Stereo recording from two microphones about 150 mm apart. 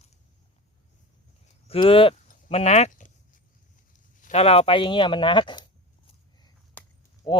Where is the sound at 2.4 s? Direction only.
45° left (ahead or behind).